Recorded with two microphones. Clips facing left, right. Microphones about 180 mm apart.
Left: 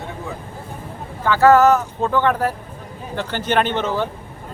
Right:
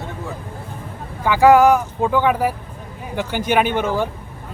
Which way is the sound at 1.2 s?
15° right (ahead or behind).